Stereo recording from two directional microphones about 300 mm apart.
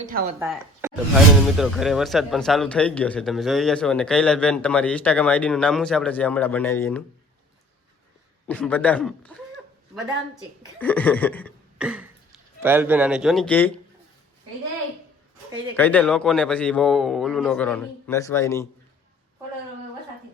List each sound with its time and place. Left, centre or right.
0.1 s speech: right
0.3 s speech: centre
8.4 s speech: centre
10.8 s chuckle: centre
12.6 s speech: centre
15.7 s speech: centre